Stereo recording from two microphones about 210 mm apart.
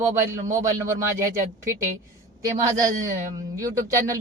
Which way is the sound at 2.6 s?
15° right (ahead or behind).